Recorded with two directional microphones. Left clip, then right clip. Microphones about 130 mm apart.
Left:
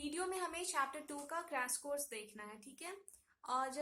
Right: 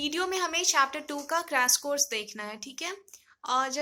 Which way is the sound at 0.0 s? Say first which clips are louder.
Right 12 dB; 20° right (ahead or behind).